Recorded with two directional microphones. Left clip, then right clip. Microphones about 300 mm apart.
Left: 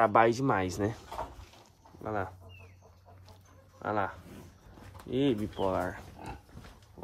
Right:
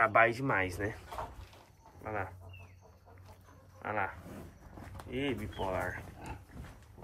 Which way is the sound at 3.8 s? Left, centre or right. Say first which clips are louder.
Left 3 dB; left.